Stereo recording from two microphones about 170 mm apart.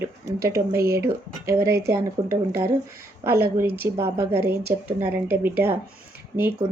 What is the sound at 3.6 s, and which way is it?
Speech, 65° right (ahead or behind).